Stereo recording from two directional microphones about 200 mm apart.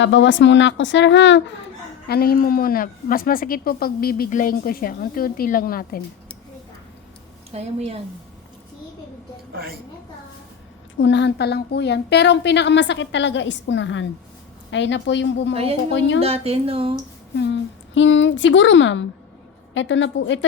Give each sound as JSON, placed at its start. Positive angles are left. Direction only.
{"t": 0.0, "sound": "a woman's voice", "side_deg": 65}
{"t": 2.0, "sound": "speech", "side_deg": 50}
{"t": 7.5, "sound": "speech", "side_deg": -30}
{"t": 10.9, "sound": "a woman's voice", "side_deg": 65}
{"t": 16.2, "sound": "speech", "side_deg": -30}
{"t": 17.3, "sound": "a woman's voice", "side_deg": 60}